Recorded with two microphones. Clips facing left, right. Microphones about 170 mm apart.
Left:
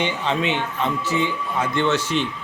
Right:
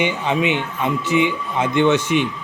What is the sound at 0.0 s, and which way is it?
Speech, 15° right (ahead or behind).